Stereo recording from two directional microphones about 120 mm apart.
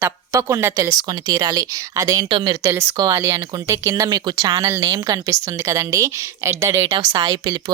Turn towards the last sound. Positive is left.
turn(degrees=-35)  # may be behind; listen again after turning